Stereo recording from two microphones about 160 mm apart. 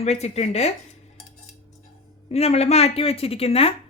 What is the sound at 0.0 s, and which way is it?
Speech, 40° left (ahead or behind).